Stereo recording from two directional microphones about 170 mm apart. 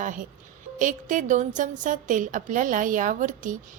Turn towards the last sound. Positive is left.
turn(degrees=-50)  # may be behind; listen again after turning